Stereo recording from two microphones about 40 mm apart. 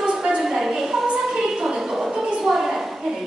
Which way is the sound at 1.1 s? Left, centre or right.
Centre.